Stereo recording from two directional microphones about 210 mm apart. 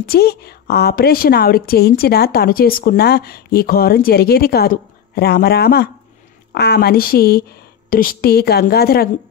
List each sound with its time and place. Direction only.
0.1 s a woman's voice: 50° left (ahead or behind)